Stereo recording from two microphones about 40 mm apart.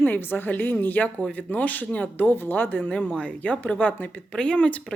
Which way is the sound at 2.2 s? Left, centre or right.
Left.